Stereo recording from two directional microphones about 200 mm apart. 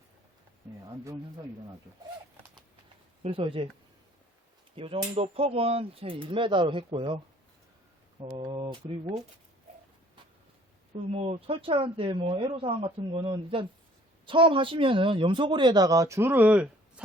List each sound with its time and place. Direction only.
0.9 s speech: 15° right (ahead or behind)
3.2 s speech: 30° right (ahead or behind)
4.7 s speech: 25° right (ahead or behind)
8.4 s speech: 25° right (ahead or behind)
10.9 s speech: 30° right (ahead or behind); by 17.0 s 5° right (ahead or behind)